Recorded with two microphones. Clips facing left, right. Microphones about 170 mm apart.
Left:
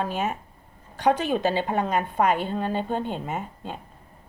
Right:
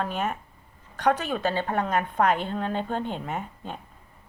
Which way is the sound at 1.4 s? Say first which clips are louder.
Left 2 dB; 15° left (ahead or behind).